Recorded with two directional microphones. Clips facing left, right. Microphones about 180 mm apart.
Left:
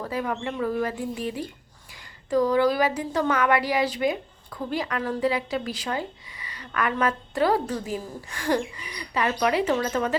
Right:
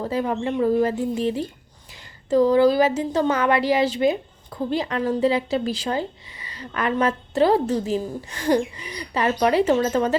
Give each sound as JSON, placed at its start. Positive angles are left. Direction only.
{"t": 0.0, "sound": "speech", "side_deg": -30}